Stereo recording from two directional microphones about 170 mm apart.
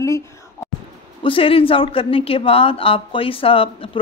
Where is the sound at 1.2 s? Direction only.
30° left (ahead or behind).